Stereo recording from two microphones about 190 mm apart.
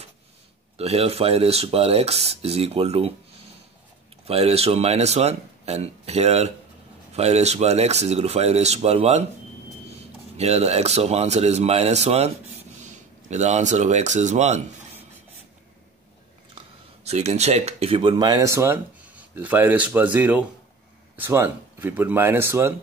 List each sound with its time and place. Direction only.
0.7 s speech: 30° right (ahead or behind)
4.3 s speech: 30° right (ahead or behind)
10.3 s speech: 35° right (ahead or behind)
16.5 s speech: 35° right (ahead or behind); by 22.8 s 15° right (ahead or behind)